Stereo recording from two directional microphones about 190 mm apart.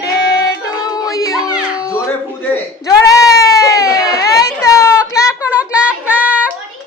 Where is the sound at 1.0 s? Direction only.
20° left (ahead or behind).